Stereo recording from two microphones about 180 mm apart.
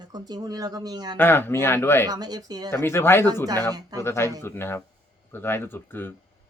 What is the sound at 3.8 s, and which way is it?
Speech, 20° right (ahead or behind).